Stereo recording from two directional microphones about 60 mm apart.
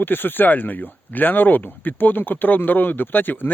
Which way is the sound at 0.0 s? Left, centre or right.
Left.